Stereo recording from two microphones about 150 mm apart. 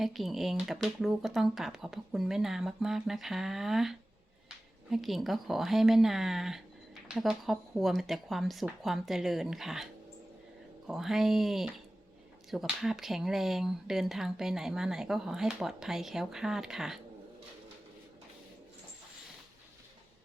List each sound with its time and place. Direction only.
0.0 s speech: centre (ahead or behind)